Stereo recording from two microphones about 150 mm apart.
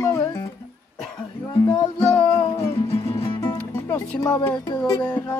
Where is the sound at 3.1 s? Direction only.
40° left (ahead or behind).